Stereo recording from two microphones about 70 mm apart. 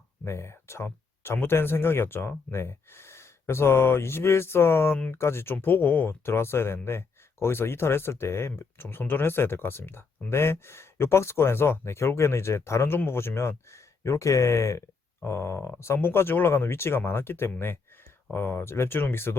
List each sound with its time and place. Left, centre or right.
0.3 s speech: left